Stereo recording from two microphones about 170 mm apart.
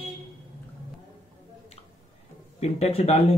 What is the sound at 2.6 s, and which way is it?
Speech, 40° left (ahead or behind).